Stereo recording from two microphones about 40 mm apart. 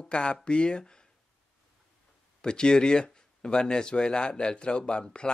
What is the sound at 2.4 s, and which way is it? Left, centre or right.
Speech, left.